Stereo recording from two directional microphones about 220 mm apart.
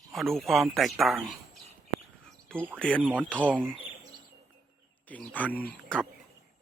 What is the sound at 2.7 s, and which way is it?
Speech, 5° left (ahead or behind).